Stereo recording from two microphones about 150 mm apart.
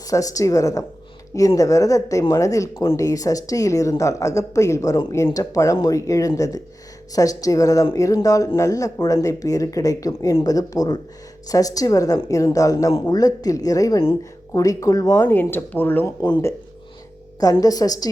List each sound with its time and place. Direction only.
0.1 s speech: 25° left (ahead or behind)
16.2 s speech: 25° left (ahead or behind)